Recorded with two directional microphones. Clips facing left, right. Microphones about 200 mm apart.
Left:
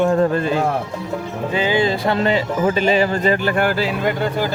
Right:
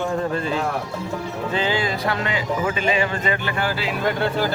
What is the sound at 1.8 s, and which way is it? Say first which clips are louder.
Speech: left 6 dB; 25° left (ahead or behind).